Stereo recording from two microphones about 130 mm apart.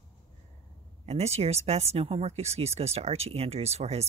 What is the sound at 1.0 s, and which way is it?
Speech, 55° right (ahead or behind).